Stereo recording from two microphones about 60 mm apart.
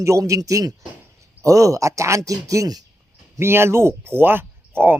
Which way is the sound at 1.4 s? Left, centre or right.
Right.